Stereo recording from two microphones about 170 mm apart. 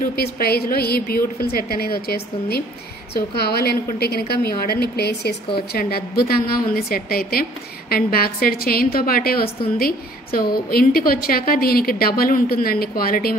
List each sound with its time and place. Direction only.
0.1 s a woman's voice: 65° left (ahead or behind)